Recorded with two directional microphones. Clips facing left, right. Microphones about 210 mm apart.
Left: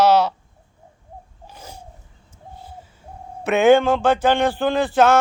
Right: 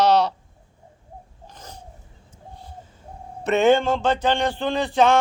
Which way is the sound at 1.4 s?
10° left (ahead or behind).